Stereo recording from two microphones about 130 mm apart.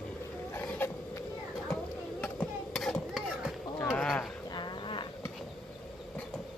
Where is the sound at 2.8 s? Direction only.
5° left (ahead or behind).